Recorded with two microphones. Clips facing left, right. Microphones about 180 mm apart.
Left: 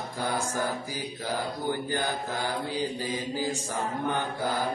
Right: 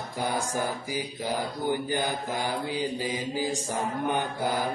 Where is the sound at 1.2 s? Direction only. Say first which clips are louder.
Right 1 dB; 15° right (ahead or behind).